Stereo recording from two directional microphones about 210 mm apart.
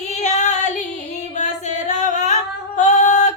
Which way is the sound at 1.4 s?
35° left (ahead or behind).